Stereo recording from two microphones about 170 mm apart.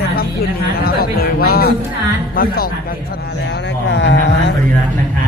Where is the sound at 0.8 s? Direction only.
60° left (ahead or behind).